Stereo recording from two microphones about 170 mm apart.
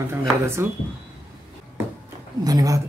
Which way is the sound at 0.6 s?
15° right (ahead or behind).